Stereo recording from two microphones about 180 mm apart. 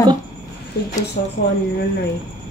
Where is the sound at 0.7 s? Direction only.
60° left (ahead or behind).